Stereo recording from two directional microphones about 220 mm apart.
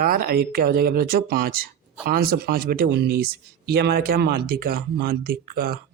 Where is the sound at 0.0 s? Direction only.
40° right (ahead or behind).